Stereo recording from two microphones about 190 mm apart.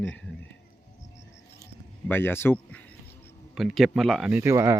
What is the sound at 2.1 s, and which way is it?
Speech, 10° left (ahead or behind).